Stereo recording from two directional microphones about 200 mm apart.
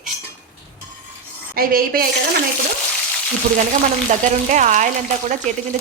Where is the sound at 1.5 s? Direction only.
45° right (ahead or behind).